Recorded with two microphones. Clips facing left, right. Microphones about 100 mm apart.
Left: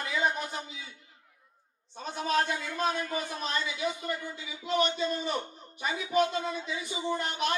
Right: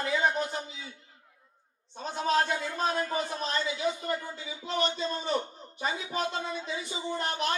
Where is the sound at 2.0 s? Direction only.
35° right (ahead or behind).